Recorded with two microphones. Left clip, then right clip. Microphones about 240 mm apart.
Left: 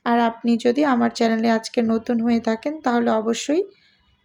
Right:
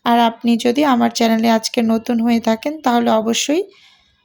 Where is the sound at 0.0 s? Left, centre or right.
Right.